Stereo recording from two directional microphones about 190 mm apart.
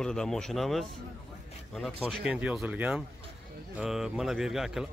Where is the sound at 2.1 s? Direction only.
5° right (ahead or behind).